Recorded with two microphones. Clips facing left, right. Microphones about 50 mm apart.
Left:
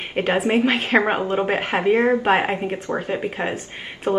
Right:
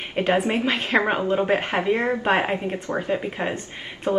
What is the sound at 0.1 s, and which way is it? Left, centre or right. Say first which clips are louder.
Speech: left 1 dB; centre.